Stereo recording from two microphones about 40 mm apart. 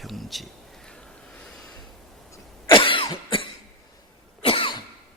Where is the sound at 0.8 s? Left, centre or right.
Left.